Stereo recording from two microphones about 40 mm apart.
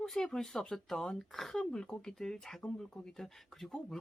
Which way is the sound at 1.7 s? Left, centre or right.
Centre.